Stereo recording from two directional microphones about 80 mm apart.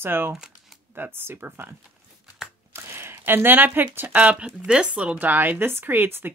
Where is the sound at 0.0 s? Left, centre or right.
Right.